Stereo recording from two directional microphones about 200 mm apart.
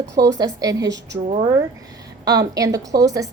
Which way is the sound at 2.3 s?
20° right (ahead or behind).